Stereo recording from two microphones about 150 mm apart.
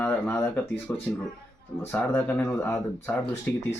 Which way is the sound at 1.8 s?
10° left (ahead or behind).